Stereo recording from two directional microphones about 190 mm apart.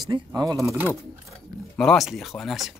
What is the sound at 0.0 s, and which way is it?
Speech, 20° right (ahead or behind).